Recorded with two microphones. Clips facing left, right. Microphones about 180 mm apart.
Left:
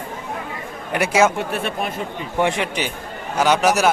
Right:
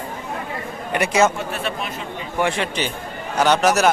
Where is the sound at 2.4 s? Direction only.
15° left (ahead or behind).